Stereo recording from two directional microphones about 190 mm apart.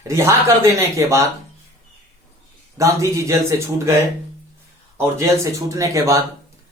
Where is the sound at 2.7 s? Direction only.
15° right (ahead or behind).